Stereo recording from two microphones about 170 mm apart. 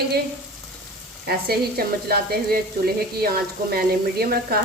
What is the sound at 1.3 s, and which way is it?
Sizzle, 65° right (ahead or behind).